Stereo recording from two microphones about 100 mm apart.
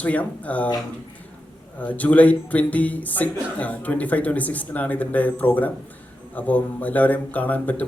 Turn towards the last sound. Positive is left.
turn(degrees=15)  # may be behind; listen again after turning